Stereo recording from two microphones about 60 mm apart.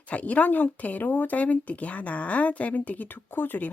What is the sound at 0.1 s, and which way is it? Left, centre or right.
Speech, left.